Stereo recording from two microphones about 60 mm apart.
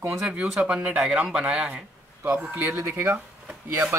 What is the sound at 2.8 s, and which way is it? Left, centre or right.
Speech, right.